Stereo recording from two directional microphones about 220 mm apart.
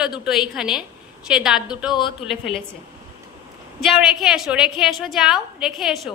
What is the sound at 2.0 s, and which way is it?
Speech, 20° left (ahead or behind).